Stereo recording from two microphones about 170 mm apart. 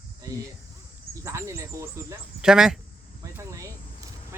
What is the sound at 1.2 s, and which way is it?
Speech, 15° right (ahead or behind).